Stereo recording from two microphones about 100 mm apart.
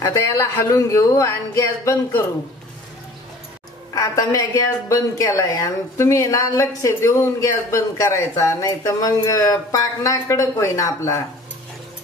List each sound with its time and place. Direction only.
0.0 s a woman's voice: 30° left (ahead or behind)
3.9 s a woman's voice: 35° left (ahead or behind)